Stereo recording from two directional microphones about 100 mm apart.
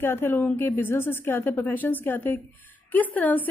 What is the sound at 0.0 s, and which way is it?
A woman's voice, 25° left (ahead or behind).